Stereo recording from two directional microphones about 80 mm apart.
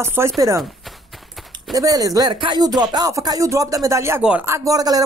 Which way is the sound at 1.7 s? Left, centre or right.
Right.